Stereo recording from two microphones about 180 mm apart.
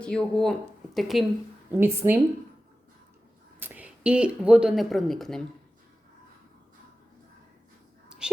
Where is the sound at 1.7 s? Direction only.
10° right (ahead or behind).